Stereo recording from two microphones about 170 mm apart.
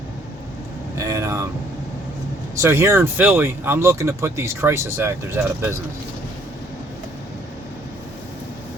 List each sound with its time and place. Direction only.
0.9 s vehicle: 20° right (ahead or behind)
2.6 s speech: 15° right (ahead or behind)